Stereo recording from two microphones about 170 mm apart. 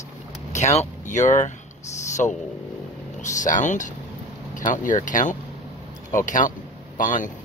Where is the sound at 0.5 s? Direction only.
40° left (ahead or behind).